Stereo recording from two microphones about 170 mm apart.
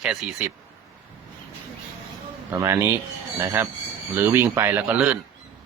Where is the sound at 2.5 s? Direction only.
15° right (ahead or behind).